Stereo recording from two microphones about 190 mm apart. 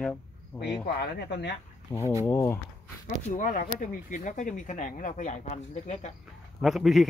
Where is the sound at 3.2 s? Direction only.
45° left (ahead or behind).